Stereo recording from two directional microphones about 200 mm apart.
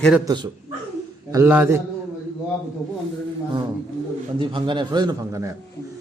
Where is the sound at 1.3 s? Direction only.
10° right (ahead or behind).